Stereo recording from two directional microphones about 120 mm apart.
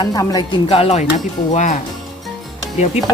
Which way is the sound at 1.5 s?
90° left.